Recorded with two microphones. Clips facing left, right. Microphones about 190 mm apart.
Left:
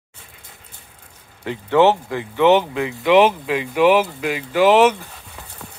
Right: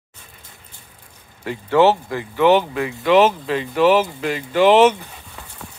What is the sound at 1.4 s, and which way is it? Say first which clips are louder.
Speech: even; 20° left (ahead or behind).